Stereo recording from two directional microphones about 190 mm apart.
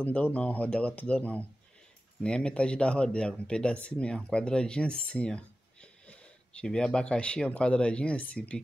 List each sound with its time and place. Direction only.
0.0 s speech: 5° left (ahead or behind)